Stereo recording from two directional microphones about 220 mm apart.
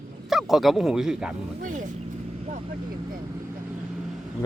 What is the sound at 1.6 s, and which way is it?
Speech, 35° right (ahead or behind).